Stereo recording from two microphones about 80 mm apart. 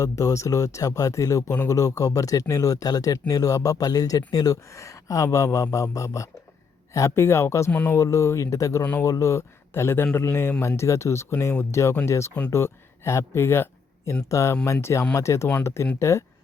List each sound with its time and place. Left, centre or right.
0.0 s speech: left
7.7 s music: centre
7.9 s speech: left
8.8 s speech: centre
9.0 s speech: left